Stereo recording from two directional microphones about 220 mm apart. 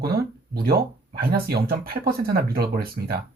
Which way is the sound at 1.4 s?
45° right (ahead or behind).